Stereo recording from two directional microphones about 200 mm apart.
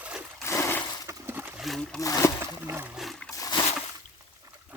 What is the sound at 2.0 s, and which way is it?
Speech, 15° left (ahead or behind).